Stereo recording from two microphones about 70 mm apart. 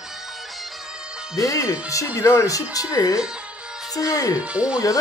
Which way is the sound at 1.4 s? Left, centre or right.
Left.